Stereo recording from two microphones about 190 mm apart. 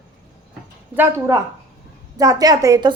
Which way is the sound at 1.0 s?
15° right (ahead or behind).